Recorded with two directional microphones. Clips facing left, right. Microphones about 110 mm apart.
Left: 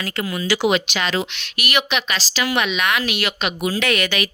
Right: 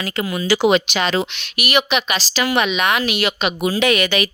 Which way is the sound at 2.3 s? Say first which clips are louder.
Right 3 dB; 25° right (ahead or behind).